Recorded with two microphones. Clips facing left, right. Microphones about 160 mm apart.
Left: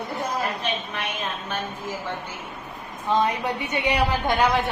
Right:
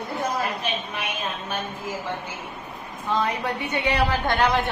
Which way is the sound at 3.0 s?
15° left (ahead or behind).